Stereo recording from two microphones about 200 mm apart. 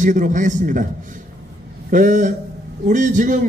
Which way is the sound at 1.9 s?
40° right (ahead or behind).